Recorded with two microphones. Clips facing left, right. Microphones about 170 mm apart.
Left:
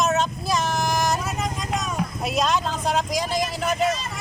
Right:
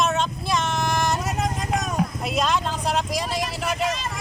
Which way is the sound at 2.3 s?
Centre (ahead or behind).